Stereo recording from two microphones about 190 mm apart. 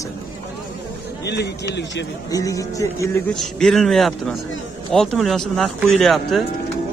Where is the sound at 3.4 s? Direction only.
Centre (ahead or behind).